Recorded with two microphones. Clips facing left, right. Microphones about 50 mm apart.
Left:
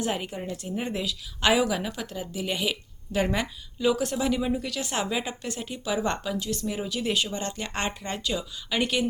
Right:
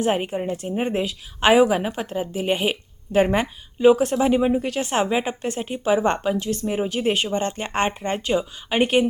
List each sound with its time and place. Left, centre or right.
0.0 s a woman's voice: right